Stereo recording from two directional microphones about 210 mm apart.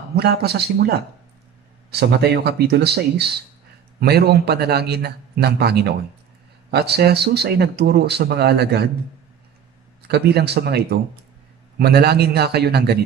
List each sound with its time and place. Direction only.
0.1 s speech: 50° right (ahead or behind)
10.0 s speech: 50° right (ahead or behind)